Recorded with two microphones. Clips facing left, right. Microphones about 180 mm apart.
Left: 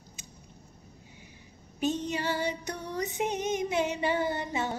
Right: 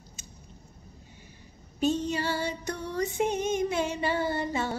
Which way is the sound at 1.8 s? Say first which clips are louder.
Right 3 dB; 15° left (ahead or behind).